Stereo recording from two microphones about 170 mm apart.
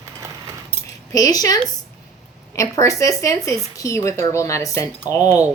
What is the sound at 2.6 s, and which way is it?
Speech, 20° left (ahead or behind).